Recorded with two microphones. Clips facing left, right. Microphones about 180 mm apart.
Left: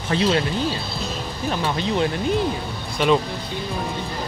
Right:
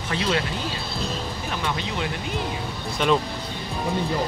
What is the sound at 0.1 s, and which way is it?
Speech, 30° left (ahead or behind).